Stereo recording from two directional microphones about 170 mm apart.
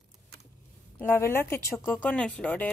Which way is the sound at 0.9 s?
10° left (ahead or behind).